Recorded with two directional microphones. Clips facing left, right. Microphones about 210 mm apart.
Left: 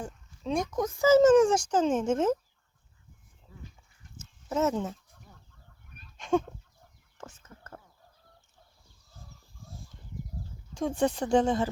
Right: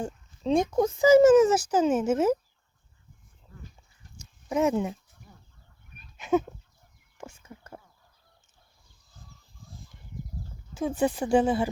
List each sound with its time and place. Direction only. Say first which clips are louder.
0.0 s speech: right 6 dB; 25° right (ahead or behind)
1.0 s speech: right 2 dB; 10° right (ahead or behind)
4.2 s dog: right 3 dB; 15° right (ahead or behind)
6.1 s chicken: right 2 dB; 5° right (ahead or behind)
7.2 s whispering: right 3 dB; 10° right (ahead or behind)
10.8 s speech: right 1 dB; 5° right (ahead or behind)